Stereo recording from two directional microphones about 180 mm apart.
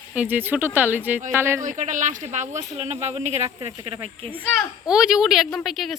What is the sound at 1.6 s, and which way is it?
Speech, 45° right (ahead or behind).